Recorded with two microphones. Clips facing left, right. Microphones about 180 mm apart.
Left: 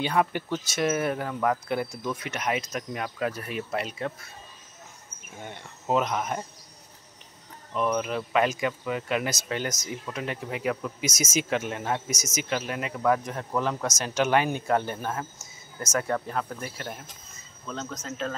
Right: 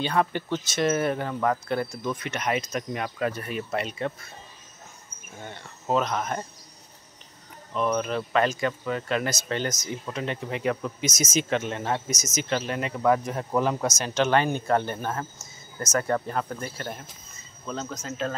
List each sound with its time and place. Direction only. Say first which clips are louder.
0.0 s speech: even; 15° left (ahead or behind)
5.4 s speech: even; 15° left (ahead or behind)
7.7 s speech: right 1 dB; 5° left (ahead or behind)
13.5 s speech: right 3 dB; 15° right (ahead or behind)
13.8 s speech: right 1 dB; centre (ahead or behind)
17.6 s speech: right 2 dB; 5° right (ahead or behind)